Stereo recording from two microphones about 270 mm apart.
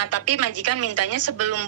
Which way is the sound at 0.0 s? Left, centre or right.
Right.